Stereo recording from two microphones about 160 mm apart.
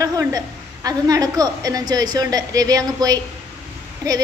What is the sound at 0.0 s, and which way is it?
A woman's voice, 20° right (ahead or behind).